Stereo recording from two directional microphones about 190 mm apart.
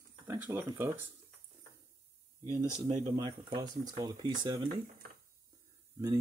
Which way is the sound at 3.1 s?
20° right (ahead or behind).